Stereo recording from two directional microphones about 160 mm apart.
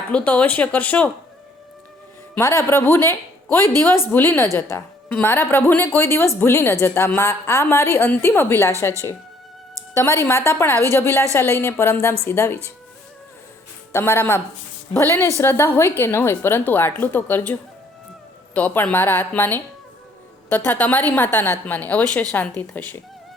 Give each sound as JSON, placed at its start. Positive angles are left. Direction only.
{"t": 0.1, "sound": "a woman's voice", "side_deg": 10}
{"t": 2.3, "sound": "a woman's voice", "side_deg": 15}
{"t": 10.0, "sound": "a woman's voice", "side_deg": 15}
{"t": 13.9, "sound": "a woman's voice", "side_deg": 15}
{"t": 20.7, "sound": "a woman's voice", "side_deg": 10}